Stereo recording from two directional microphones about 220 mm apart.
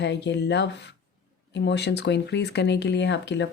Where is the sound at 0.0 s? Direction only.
50° left (ahead or behind).